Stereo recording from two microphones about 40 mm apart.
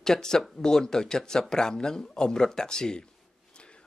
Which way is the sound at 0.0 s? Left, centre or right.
Centre.